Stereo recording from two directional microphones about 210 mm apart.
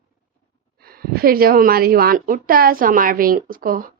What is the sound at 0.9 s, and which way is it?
A woman's voice, 45° right (ahead or behind).